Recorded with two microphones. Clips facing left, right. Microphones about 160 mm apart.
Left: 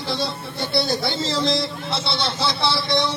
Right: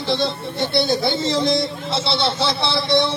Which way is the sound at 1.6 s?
25° right (ahead or behind).